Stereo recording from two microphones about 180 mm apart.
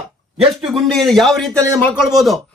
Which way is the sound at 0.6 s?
Centre (ahead or behind).